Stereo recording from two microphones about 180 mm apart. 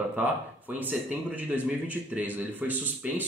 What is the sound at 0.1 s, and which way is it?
Speech, 10° right (ahead or behind).